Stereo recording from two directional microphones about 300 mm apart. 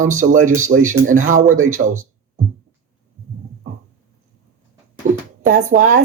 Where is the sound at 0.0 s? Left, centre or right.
Right.